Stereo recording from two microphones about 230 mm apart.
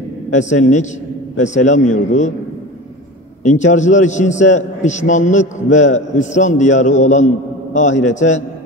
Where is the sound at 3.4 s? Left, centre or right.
Left.